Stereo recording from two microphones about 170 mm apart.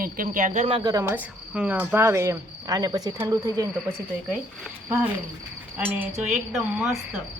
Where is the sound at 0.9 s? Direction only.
20° right (ahead or behind).